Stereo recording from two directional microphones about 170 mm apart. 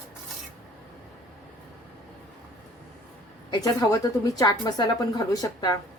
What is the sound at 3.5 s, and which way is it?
A woman's voice, 20° left (ahead or behind).